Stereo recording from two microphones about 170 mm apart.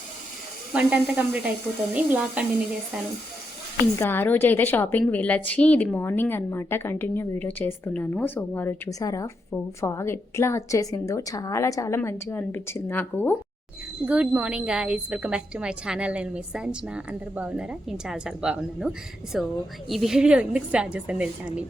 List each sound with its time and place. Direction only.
0.7 s a woman's voice: 10° right (ahead or behind)
3.9 s a woman's voice: 15° left (ahead or behind)
14.0 s a woman's voice: 10° right (ahead or behind)